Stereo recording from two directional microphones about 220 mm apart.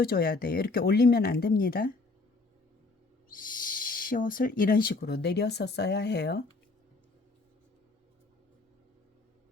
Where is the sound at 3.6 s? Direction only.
40° left (ahead or behind).